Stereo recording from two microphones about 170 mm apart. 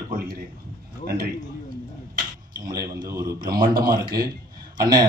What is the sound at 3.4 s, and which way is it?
Speech, 60° right (ahead or behind).